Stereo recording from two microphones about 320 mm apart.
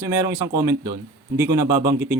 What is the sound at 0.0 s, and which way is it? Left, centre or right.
A man's voice, centre.